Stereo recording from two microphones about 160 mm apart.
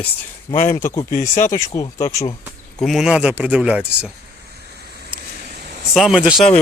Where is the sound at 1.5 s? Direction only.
20° left (ahead or behind).